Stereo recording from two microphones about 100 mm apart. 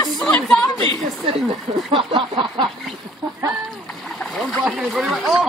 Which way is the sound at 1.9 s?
60° right (ahead or behind).